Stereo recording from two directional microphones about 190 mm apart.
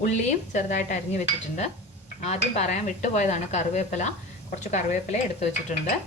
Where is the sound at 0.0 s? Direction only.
40° left (ahead or behind).